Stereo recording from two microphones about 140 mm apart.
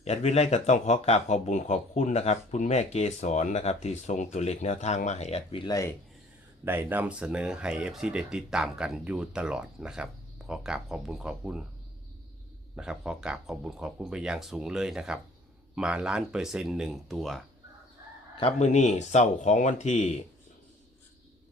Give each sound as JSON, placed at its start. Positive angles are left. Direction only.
{"t": 0.0, "sound": "speech", "side_deg": 50}
{"t": 5.6, "sound": "speech", "side_deg": 25}
{"t": 6.7, "sound": "speech", "side_deg": -15}
{"t": 12.7, "sound": "speech", "side_deg": -5}
{"t": 18.6, "sound": "speech", "side_deg": 55}